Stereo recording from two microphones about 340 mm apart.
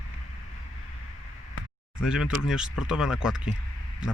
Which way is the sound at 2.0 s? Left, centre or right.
Centre.